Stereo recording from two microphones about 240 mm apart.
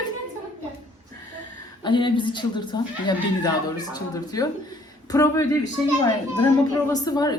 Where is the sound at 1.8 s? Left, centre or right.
Centre.